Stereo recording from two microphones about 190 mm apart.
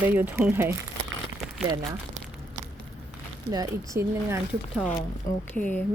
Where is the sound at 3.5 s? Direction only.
15° right (ahead or behind).